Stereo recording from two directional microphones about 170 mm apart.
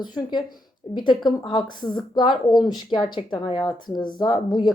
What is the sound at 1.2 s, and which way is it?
Speech, 25° left (ahead or behind).